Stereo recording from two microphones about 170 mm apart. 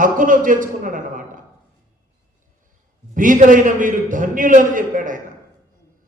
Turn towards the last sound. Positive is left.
turn(degrees=-50)  # may be behind; listen again after turning